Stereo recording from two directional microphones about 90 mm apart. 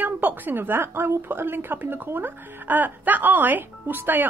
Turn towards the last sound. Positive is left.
turn(degrees=-20)  # may be behind; listen again after turning